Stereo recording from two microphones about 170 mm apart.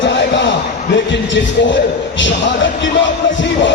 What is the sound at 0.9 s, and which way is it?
Music, 90° left.